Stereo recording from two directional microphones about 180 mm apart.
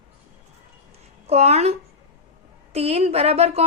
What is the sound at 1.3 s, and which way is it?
Speech, 35° right (ahead or behind).